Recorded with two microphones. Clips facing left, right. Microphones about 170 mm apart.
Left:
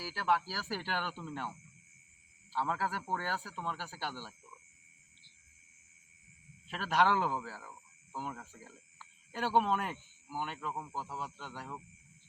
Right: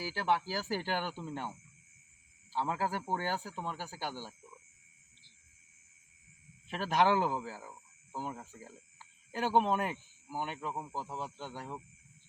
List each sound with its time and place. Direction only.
0.0 s speech: 20° right (ahead or behind)
6.7 s speech: 20° right (ahead or behind)